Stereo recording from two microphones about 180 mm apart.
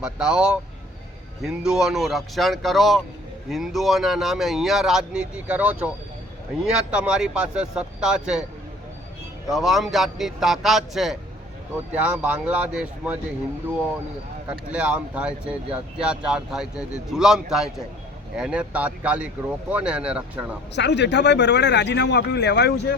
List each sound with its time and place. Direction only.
0.0 s speech: 5° right (ahead or behind)
9.5 s speech: centre (ahead or behind)
14.7 s speech: 5° right (ahead or behind)
20.7 s speech: 75° left (ahead or behind)